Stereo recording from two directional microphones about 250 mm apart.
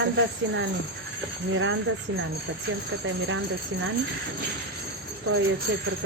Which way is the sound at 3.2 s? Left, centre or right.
Right.